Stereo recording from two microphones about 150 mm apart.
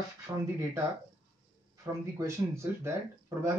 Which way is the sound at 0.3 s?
15° right (ahead or behind).